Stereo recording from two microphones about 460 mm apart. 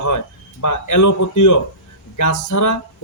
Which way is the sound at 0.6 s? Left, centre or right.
Left.